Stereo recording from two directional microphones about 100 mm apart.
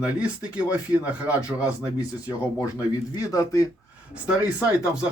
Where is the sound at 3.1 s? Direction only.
35° left (ahead or behind).